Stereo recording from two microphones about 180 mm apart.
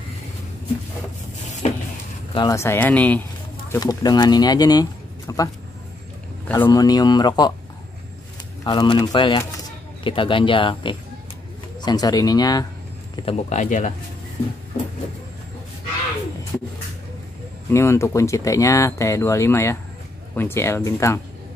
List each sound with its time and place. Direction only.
1.6 s vehicle: 40° left (ahead or behind)
2.3 s speech: 20° left (ahead or behind)
3.7 s speech: 20° left (ahead or behind)
6.5 s speech: 15° left (ahead or behind)
8.6 s speech: 25° left (ahead or behind)
13.1 s speech: 30° left (ahead or behind)
17.6 s speech: 15° left (ahead or behind)